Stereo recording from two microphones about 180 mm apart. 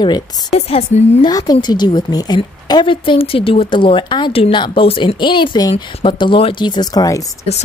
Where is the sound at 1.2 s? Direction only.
20° left (ahead or behind).